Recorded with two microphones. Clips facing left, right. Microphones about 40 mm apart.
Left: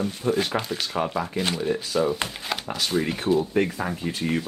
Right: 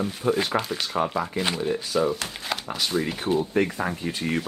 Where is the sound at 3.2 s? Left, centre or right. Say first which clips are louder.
Left 3 dB; right.